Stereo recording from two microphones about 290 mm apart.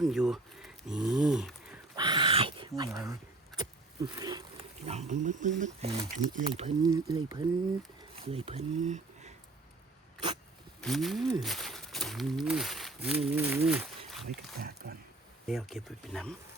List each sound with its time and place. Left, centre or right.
0.0 s speech: centre
2.0 s a sound: centre
4.9 s speech: right
10.8 s speech: centre
14.1 s a sound: centre
14.6 s speech: right
15.4 s speech: centre